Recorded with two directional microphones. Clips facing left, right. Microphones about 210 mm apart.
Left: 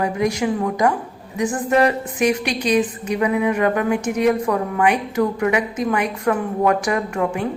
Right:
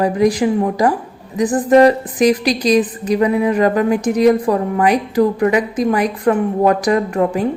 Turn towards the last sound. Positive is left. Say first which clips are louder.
# right 5 dB
turn(degrees=-35)  # may be behind; listen again after turning